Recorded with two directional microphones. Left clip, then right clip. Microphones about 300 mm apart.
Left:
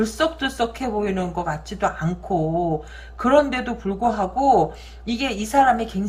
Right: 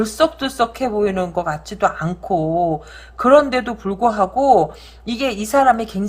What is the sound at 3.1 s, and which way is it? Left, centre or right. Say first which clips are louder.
Speech: right 5 dB; centre.